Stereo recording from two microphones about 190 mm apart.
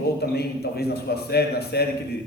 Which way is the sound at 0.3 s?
60° left (ahead or behind).